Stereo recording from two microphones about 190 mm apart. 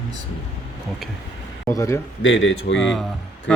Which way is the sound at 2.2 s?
75° left (ahead or behind).